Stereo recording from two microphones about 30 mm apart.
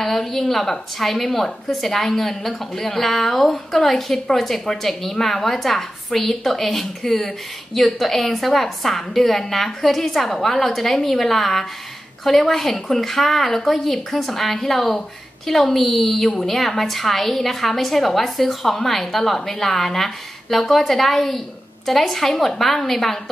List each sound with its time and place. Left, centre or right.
0.0 s a woman's voice: centre